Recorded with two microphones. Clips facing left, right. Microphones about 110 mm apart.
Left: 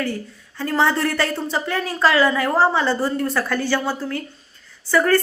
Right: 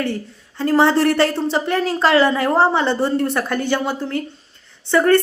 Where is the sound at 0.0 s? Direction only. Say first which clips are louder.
Right 2 dB; 25° right (ahead or behind).